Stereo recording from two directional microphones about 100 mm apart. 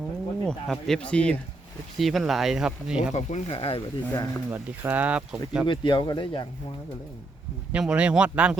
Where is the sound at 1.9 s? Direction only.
Centre (ahead or behind).